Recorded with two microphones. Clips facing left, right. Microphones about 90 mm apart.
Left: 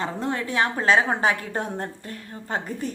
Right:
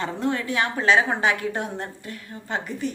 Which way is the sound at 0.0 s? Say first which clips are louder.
Right 1 dB; 30° left (ahead or behind).